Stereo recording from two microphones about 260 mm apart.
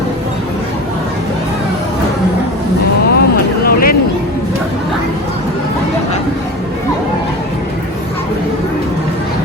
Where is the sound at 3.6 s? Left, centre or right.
Left.